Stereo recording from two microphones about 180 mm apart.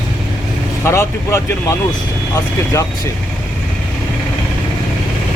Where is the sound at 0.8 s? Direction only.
15° left (ahead or behind).